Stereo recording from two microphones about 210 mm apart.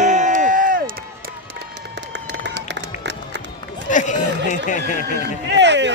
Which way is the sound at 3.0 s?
55° right (ahead or behind).